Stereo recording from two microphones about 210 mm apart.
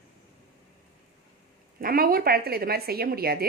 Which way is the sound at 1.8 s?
45° right (ahead or behind).